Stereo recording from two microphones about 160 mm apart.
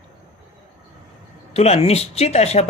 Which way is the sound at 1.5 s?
40° left (ahead or behind).